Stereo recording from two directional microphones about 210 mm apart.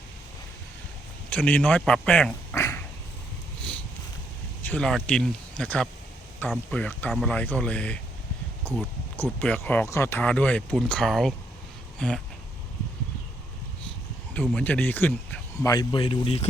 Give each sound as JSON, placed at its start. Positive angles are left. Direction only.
{"t": 1.3, "sound": "speech", "side_deg": 5}
{"t": 4.6, "sound": "speech", "side_deg": 5}
{"t": 11.9, "sound": "a sound", "side_deg": 5}
{"t": 14.3, "sound": "speech", "side_deg": 5}
{"t": 15.7, "sound": "speech", "side_deg": 20}